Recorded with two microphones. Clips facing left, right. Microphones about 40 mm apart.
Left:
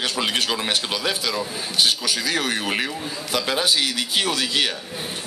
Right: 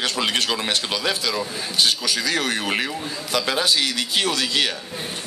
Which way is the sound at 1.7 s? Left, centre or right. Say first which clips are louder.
Even; centre.